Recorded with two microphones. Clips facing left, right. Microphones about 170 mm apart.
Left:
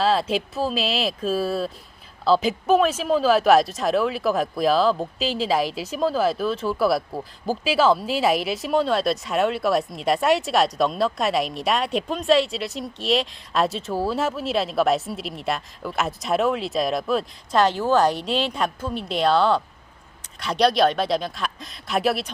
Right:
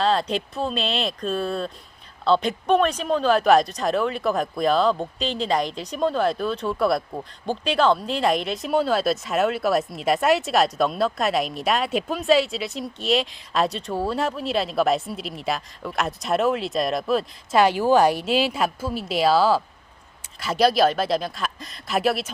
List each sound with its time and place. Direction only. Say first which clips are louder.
0.0 s speech: left 1 dB; 5° left (ahead or behind)
17.6 s speech: right 2 dB; 10° right (ahead or behind)